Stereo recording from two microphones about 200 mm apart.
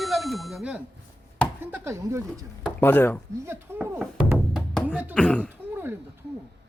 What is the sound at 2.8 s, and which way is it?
Speech, 10° left (ahead or behind).